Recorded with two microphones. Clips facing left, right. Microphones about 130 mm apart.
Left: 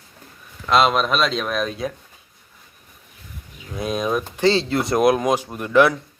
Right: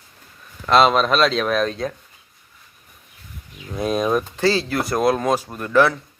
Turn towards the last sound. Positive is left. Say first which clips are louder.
# left 1 dB
turn(degrees=15)  # may be behind; listen again after turning